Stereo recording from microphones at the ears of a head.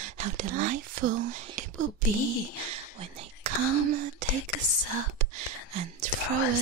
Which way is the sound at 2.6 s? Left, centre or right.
Right.